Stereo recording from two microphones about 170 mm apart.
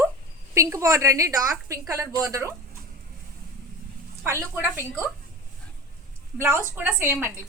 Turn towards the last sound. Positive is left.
turn(degrees=-15)  # may be behind; listen again after turning